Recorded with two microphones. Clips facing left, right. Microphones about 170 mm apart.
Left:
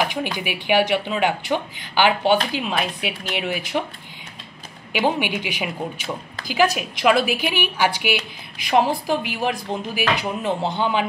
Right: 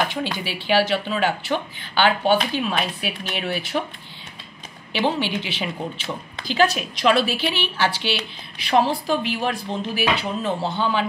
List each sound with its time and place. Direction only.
0.1 s a woman's voice: 15° left (ahead or behind)
5.0 s a woman's voice: 15° left (ahead or behind)